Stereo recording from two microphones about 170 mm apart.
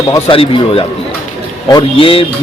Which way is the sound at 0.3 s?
30° left (ahead or behind).